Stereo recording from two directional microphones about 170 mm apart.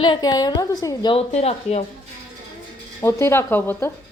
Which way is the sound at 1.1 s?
35° left (ahead or behind).